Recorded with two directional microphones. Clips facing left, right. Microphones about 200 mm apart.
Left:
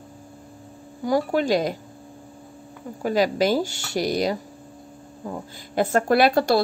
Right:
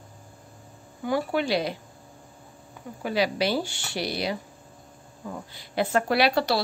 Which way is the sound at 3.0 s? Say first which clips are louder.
Left 5 dB; 45° left (ahead or behind).